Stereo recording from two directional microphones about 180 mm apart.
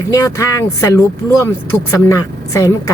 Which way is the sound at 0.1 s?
15° left (ahead or behind).